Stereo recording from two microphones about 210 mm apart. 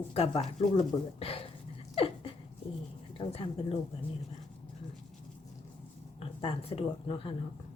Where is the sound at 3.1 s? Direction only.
25° left (ahead or behind).